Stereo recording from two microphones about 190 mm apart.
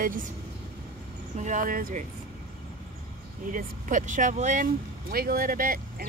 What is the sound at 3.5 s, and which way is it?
Speech, 40° right (ahead or behind).